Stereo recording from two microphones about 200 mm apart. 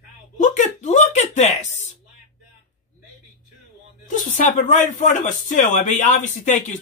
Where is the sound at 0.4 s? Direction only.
35° left (ahead or behind).